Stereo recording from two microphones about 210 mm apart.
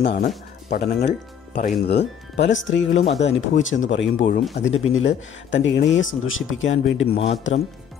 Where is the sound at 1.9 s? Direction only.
55° left (ahead or behind).